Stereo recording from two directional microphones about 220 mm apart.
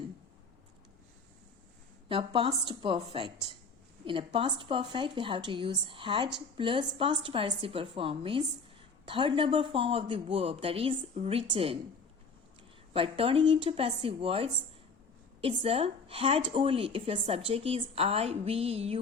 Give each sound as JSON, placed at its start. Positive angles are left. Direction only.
{"t": 2.0, "sound": "a woman's voice", "side_deg": -25}
{"t": 12.9, "sound": "a woman's voice", "side_deg": -25}